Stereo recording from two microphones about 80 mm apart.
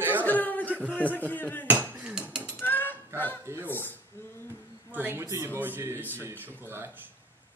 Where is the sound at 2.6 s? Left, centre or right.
Left.